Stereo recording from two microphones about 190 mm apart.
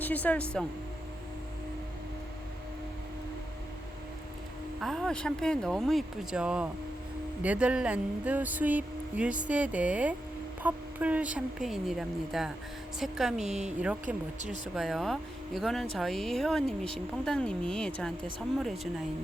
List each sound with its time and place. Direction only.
0.0 s speech: 10° left (ahead or behind)
4.8 s speech: centre (ahead or behind)
13.4 s speech: 35° right (ahead or behind)
13.7 s speech: 5° right (ahead or behind)